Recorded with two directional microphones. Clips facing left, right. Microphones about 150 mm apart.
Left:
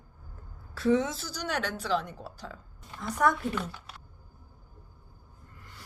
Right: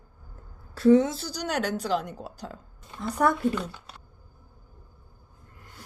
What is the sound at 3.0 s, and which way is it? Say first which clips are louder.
Speech: right 2 dB; 30° right (ahead or behind).